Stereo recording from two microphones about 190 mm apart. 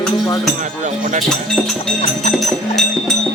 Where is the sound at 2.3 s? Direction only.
Centre (ahead or behind).